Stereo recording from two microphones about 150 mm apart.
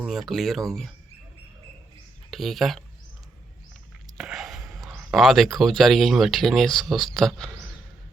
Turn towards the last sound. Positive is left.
turn(degrees=5)  # may be behind; listen again after turning